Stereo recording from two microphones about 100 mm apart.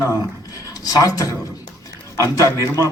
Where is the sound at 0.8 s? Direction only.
40° left (ahead or behind).